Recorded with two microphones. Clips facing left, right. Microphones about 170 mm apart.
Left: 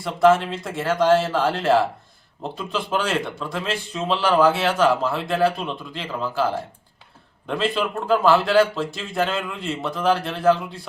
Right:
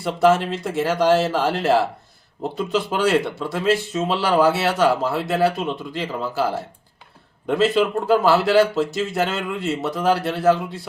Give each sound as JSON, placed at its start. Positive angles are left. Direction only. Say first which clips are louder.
{"t": 0.0, "sound": "speech", "louder": "even", "side_deg": -5}
{"t": 7.6, "sound": "speech", "louder": "right 6 dB", "side_deg": -5}